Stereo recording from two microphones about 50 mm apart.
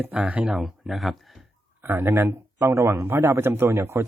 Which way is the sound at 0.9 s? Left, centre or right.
Centre.